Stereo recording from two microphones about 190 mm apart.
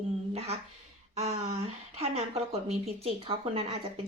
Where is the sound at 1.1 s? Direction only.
35° right (ahead or behind).